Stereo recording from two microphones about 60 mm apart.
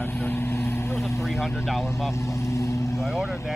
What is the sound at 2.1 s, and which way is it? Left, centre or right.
Vehicle, left.